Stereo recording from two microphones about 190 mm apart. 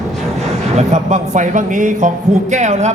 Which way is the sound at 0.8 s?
35° right (ahead or behind).